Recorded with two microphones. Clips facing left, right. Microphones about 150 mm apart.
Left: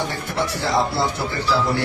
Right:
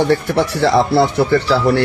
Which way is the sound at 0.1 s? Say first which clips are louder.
Right 10 dB; 70° right (ahead or behind).